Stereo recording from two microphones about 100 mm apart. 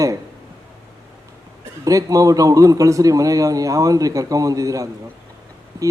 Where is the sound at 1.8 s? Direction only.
35° right (ahead or behind).